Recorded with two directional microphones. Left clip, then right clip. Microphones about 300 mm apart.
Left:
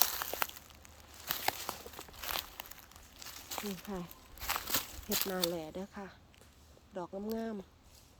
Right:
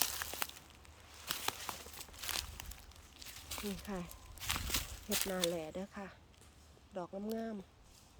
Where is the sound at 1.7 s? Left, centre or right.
Left.